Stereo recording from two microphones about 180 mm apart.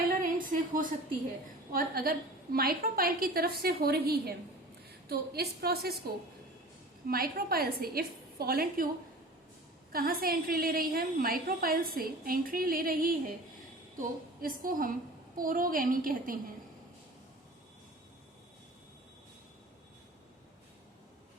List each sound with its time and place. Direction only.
0.4 s a sound: 50° right (ahead or behind)
1.7 s a woman's voice: 55° right (ahead or behind)
7.1 s a woman's voice: 55° right (ahead or behind)
9.9 s a woman's voice: 55° right (ahead or behind)